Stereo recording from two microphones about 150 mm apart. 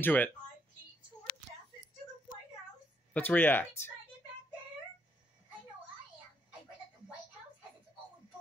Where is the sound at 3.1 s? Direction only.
10° left (ahead or behind).